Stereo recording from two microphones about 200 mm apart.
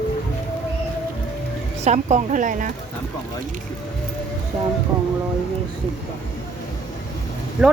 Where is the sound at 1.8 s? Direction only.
35° right (ahead or behind).